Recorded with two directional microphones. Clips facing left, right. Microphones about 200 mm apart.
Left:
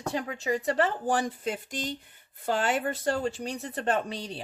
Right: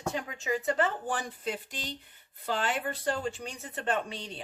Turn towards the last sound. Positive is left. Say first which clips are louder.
# left 3 dB
turn(degrees=40)  # may be behind; listen again after turning